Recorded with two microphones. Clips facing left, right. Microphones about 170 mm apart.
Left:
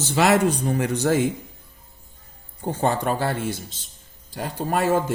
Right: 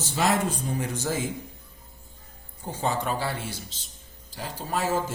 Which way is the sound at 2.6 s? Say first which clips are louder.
Left 5 dB; 55° left (ahead or behind).